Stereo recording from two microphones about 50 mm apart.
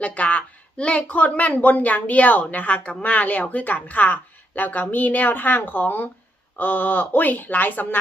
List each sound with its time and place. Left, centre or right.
0.0 s a woman's voice: left